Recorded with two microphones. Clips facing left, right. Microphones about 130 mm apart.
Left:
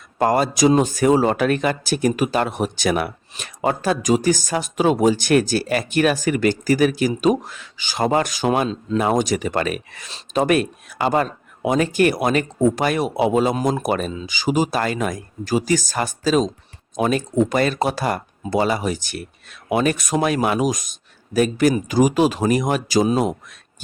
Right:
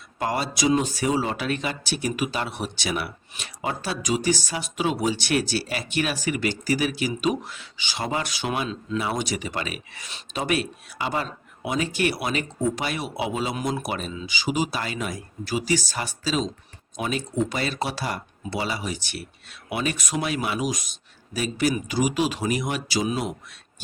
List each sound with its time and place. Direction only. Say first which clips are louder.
0.2 s speech: left 8 dB; 45° left (ahead or behind)